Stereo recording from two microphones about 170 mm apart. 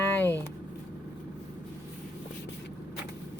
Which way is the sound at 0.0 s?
10° left (ahead or behind).